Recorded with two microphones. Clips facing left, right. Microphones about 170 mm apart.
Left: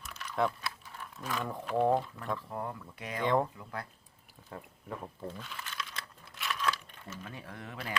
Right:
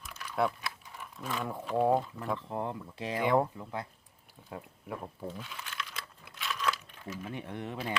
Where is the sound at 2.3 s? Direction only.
20° right (ahead or behind).